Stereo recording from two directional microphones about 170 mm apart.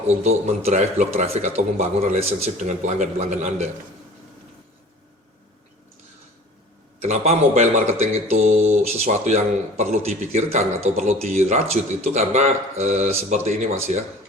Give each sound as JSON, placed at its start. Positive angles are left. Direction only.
{"t": 0.3, "sound": "speech", "side_deg": -40}
{"t": 7.0, "sound": "speech", "side_deg": -40}